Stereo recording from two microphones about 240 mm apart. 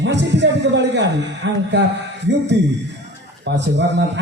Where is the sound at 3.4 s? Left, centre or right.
Right.